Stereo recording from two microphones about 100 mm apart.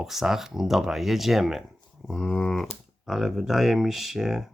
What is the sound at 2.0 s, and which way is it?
Speech, 10° left (ahead or behind).